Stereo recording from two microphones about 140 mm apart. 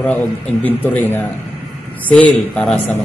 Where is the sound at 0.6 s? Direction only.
10° left (ahead or behind).